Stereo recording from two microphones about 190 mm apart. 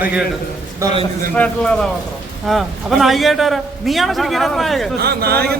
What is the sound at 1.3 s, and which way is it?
A man's voice, 5° left (ahead or behind).